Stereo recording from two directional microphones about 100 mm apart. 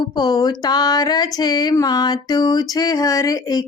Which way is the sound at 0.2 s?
45° left (ahead or behind).